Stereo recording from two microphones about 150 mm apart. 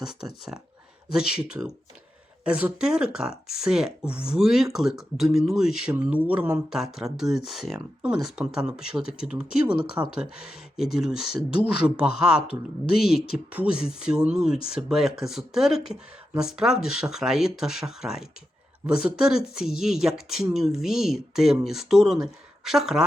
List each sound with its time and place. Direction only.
1.1 s speech: 5° right (ahead or behind)
10.0 s speech: 20° right (ahead or behind)
10.9 s speech: 5° right (ahead or behind)